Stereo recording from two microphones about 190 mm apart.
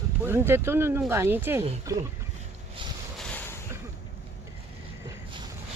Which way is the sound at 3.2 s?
10° left (ahead or behind).